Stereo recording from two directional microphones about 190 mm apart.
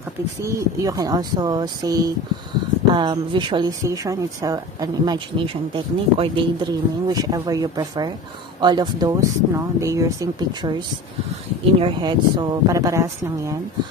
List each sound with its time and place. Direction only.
0.4 s speech: 15° right (ahead or behind)
11.8 s speech: 25° right (ahead or behind)